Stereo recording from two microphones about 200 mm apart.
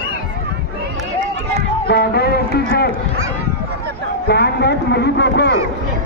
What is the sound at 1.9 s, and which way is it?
Music, 55° left (ahead or behind).